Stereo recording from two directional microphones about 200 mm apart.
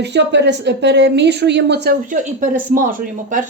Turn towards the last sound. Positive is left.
turn(degrees=-40)  # may be behind; listen again after turning